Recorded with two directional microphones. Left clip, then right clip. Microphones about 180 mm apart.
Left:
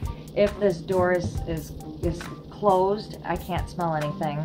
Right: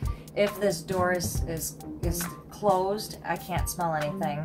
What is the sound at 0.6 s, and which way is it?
Speech, 20° right (ahead or behind).